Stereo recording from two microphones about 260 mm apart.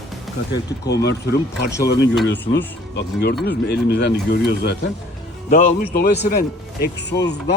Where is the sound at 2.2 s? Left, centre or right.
Left.